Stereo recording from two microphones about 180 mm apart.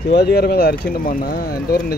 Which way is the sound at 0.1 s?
65° left (ahead or behind).